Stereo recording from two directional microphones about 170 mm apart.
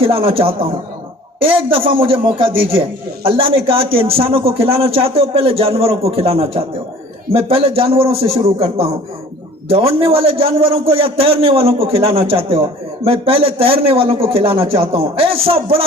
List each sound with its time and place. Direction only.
0.0 s a man's voice: 35° right (ahead or behind)